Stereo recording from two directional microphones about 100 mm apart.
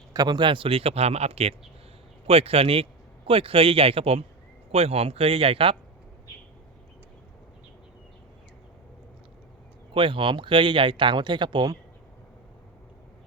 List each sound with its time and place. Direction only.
0.1 s speech: 40° right (ahead or behind); by 1.5 s 90° right
2.2 s speech: 80° right
4.7 s speech: 90° right; by 5.7 s 70° right (ahead or behind)
9.9 s speech: 60° right (ahead or behind)